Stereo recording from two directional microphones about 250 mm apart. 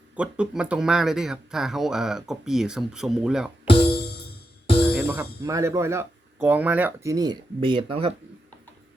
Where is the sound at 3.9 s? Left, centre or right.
Left.